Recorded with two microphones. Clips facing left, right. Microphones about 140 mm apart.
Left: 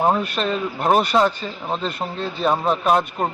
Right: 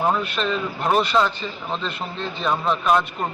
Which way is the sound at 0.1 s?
40° left (ahead or behind).